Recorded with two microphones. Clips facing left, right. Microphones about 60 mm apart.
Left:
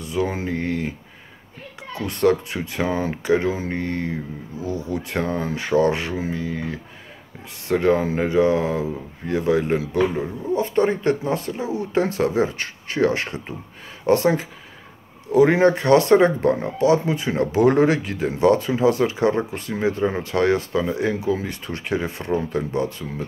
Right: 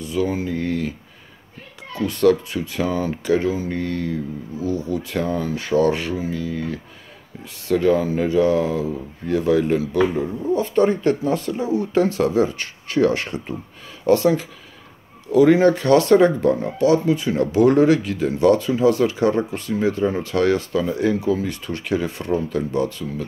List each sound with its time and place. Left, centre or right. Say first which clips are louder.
0.0 s speech: right 2 dB; left
2.0 s speech: right 2 dB; left
7.6 s speech: right 1 dB; left